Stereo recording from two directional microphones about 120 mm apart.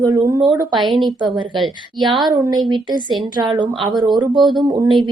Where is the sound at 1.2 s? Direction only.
40° right (ahead or behind).